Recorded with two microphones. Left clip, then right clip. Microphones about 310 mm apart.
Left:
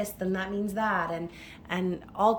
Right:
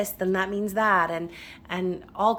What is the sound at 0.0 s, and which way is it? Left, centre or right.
A woman's voice, centre.